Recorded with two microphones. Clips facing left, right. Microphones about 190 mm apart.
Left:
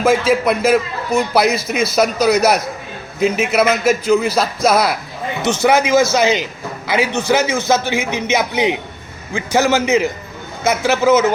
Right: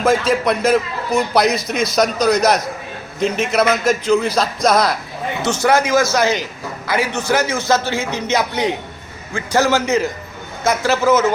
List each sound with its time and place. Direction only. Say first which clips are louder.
0.0 s a man's voice: left 2 dB; 5° left (ahead or behind)
5.6 s a man's voice: left 2 dB; 20° left (ahead or behind)